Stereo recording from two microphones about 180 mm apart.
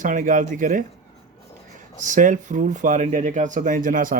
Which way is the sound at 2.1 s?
45° right (ahead or behind).